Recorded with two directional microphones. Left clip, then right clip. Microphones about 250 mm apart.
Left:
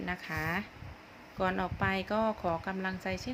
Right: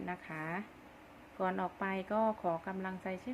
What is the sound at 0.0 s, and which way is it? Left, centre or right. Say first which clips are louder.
A woman's voice: left 6 dB; centre.